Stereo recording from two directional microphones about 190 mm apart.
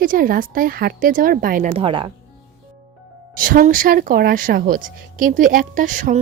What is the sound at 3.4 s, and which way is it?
Speech, 45° right (ahead or behind).